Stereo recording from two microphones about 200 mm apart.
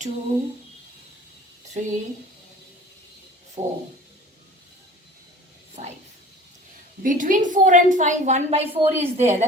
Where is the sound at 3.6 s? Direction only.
35° right (ahead or behind).